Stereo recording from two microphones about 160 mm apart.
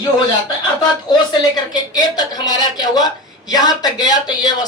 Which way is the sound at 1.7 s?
25° left (ahead or behind).